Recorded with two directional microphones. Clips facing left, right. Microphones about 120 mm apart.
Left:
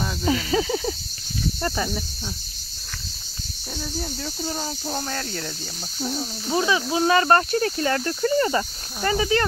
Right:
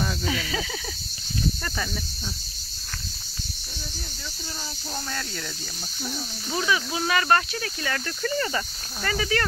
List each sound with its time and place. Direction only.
0.2 s speech: 35° left (ahead or behind)
1.6 s cricket: 25° left (ahead or behind)
4.4 s speech: 40° left (ahead or behind)